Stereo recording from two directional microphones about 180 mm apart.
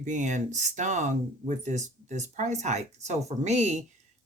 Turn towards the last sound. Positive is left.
turn(degrees=-40)  # may be behind; listen again after turning